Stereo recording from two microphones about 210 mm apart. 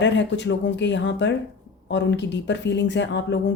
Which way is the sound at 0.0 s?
55° left (ahead or behind).